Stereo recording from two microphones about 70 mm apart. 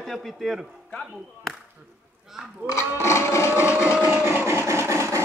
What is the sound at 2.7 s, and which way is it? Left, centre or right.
Blender, left.